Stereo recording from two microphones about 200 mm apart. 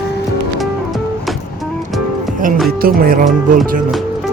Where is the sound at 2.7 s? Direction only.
50° right (ahead or behind).